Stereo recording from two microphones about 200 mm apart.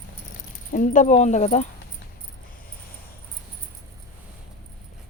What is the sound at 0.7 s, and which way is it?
Speech, 40° left (ahead or behind).